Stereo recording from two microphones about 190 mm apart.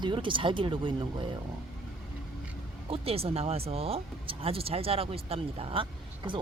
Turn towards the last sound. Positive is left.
turn(degrees=-25)  # may be behind; listen again after turning